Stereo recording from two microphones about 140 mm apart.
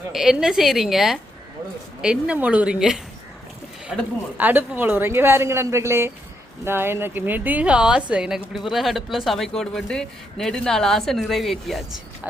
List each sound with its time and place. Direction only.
0.1 s a woman's voice: 5° right (ahead or behind)
4.4 s a woman's voice: 15° right (ahead or behind)